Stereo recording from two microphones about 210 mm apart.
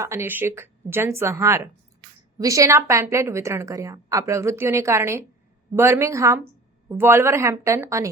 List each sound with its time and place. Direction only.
0.0 s a woman's voice: 10° right (ahead or behind)